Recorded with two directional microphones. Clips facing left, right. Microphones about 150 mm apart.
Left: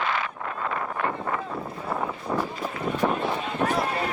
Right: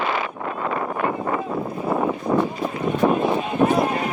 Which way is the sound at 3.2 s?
15° right (ahead or behind).